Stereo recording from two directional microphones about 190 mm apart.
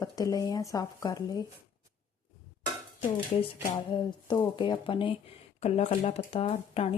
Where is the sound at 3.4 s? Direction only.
25° left (ahead or behind).